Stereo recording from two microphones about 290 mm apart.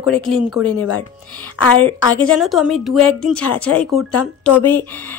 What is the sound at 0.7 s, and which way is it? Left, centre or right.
Speech, left.